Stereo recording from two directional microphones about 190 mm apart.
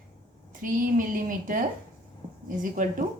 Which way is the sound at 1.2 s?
45° right (ahead or behind).